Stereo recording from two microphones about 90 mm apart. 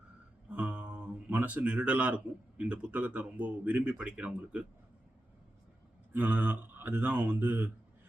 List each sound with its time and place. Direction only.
0.5 s speech: 15° right (ahead or behind)
6.1 s speech: 20° right (ahead or behind)